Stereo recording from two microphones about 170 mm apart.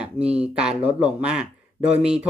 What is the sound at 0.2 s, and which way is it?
Speech, 15° left (ahead or behind).